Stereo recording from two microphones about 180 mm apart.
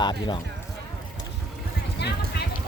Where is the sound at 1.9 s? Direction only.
65° left (ahead or behind).